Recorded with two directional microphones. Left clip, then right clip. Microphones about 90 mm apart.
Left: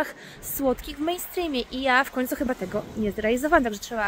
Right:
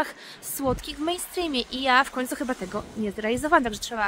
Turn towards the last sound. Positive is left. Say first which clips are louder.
# even
turn(degrees=-80)